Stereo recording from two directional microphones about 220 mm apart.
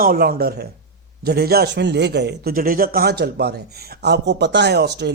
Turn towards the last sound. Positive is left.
turn(degrees=-50)  # may be behind; listen again after turning